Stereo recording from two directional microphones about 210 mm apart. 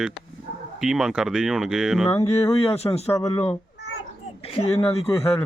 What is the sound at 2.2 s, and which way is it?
Speech, 30° left (ahead or behind).